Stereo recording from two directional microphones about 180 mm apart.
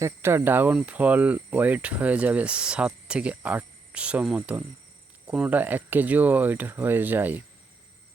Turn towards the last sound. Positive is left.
turn(degrees=-10)  # may be behind; listen again after turning